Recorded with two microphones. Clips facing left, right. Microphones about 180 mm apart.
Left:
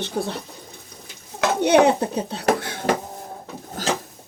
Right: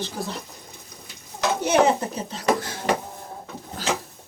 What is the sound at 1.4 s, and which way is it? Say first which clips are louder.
Speech: left 4 dB; 65° left (ahead or behind).